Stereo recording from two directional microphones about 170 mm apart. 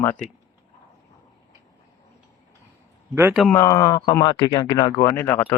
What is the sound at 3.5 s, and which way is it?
A man's voice, 20° left (ahead or behind).